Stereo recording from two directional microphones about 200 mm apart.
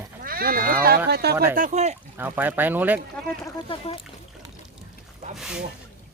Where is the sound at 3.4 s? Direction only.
25° left (ahead or behind).